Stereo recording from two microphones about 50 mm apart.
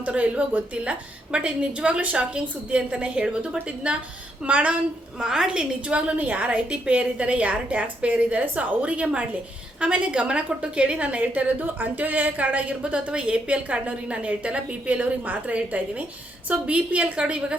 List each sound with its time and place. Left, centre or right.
0.0 s a woman's voice: right
5.2 s a woman's voice: centre